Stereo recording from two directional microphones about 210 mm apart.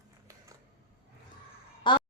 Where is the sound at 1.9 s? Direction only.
20° left (ahead or behind).